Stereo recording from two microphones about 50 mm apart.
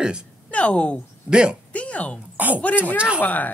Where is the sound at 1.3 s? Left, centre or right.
Centre.